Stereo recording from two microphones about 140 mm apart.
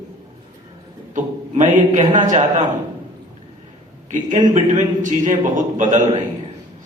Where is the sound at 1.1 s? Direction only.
65° right (ahead or behind).